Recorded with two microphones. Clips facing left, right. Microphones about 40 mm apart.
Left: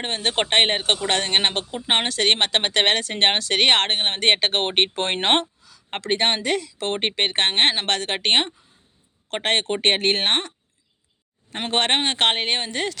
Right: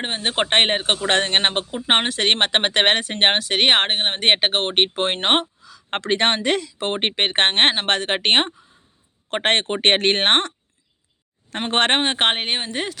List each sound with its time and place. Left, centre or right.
0.0 s speech: centre
0.5 s speech: right
0.8 s speech: centre
1.0 s speech: right
4.5 s speech: centre
5.6 s speech: right
6.7 s speech: right
11.7 s speech: right
12.4 s speech: centre